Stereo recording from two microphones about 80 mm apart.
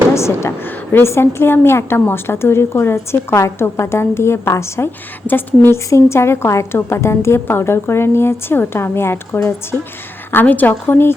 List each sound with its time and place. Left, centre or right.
0.1 s a woman's voice: left
5.2 s a woman's voice: left